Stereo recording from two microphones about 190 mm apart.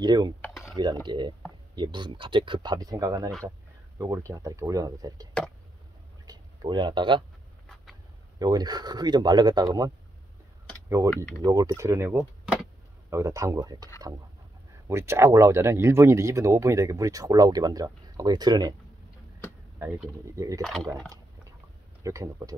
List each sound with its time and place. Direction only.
0.0 s speech: 20° right (ahead or behind)
7.6 s a sound: 5° left (ahead or behind)
8.4 s speech: 20° right (ahead or behind)
11.0 s speech: 15° right (ahead or behind)
14.9 s speech: 15° right (ahead or behind)
20.3 s speech: 15° right (ahead or behind)
22.0 s speech: 15° right (ahead or behind)